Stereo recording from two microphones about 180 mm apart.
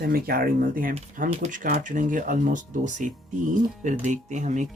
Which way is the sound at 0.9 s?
40° right (ahead or behind).